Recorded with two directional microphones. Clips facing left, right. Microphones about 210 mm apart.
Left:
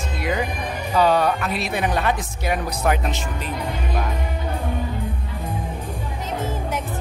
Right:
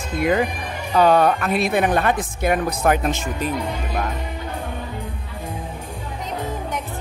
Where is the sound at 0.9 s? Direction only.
50° right (ahead or behind).